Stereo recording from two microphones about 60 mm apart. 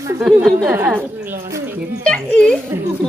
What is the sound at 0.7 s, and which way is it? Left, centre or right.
Speech, right.